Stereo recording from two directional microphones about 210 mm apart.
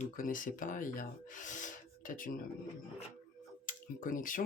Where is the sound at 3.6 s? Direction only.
40° left (ahead or behind).